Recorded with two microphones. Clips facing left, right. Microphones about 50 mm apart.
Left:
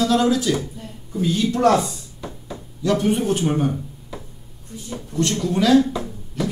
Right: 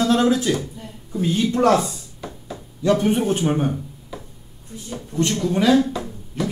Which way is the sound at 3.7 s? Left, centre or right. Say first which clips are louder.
Even; centre.